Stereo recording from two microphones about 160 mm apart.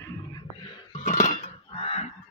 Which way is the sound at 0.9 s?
45° left (ahead or behind).